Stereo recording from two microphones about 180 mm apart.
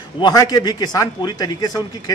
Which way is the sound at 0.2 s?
20° left (ahead or behind).